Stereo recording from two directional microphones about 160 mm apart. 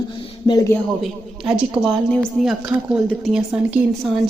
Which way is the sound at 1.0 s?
5° right (ahead or behind).